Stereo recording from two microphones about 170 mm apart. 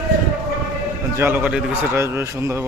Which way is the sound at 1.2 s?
10° right (ahead or behind).